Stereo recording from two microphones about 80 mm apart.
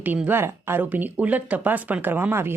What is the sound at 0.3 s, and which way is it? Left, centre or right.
Speech, right.